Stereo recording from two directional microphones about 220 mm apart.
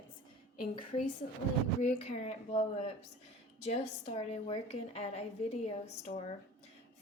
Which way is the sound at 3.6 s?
30° left (ahead or behind).